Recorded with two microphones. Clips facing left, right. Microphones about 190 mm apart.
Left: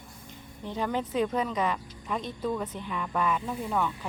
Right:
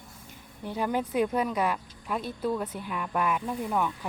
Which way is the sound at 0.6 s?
10° right (ahead or behind).